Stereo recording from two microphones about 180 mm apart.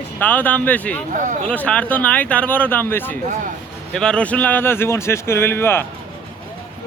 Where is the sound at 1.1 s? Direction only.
45° right (ahead or behind).